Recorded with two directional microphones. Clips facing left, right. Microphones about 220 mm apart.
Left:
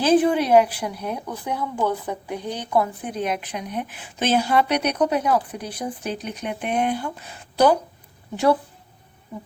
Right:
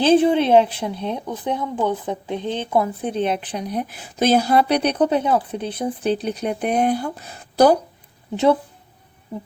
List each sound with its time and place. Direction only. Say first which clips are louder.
0.0 s a woman's voice: right 3 dB; 25° right (ahead or behind)